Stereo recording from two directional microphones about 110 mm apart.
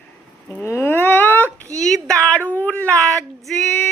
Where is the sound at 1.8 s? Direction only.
5° left (ahead or behind).